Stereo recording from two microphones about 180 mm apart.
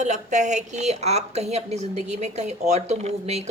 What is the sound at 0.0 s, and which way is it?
A woman's voice, 40° right (ahead or behind).